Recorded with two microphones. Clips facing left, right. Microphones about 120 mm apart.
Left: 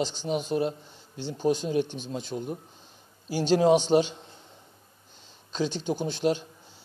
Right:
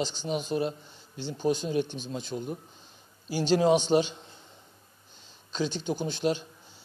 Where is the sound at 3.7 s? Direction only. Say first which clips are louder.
Left 3 dB; 25° left (ahead or behind).